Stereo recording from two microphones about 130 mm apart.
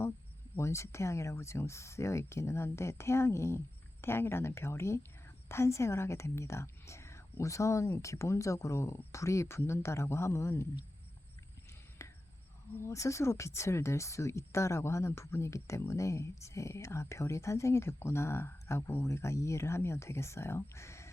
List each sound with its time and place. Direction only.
0.5 s speech: 20° left (ahead or behind)
12.0 s cricket: 20° left (ahead or behind)
12.7 s speech: 20° left (ahead or behind)